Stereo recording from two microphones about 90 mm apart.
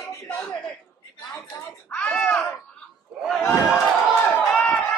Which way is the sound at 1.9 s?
10° left (ahead or behind).